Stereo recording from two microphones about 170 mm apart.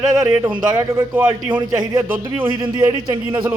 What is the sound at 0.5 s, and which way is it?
Speech, 20° right (ahead or behind).